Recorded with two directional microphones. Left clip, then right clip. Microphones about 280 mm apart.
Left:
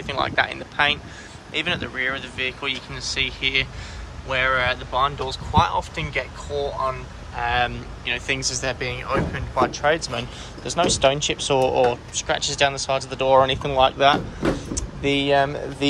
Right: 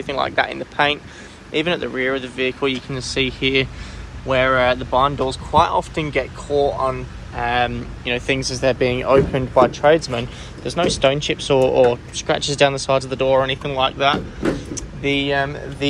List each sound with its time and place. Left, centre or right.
0.0 s speech: centre
9.7 s speech: centre